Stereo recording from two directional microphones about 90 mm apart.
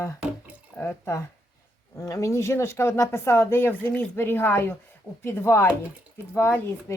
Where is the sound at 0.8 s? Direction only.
30° left (ahead or behind).